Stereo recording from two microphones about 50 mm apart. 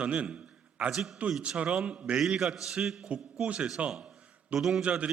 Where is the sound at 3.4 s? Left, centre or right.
Right.